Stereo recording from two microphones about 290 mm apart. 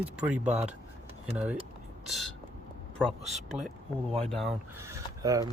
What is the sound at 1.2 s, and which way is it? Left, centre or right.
Speech, centre.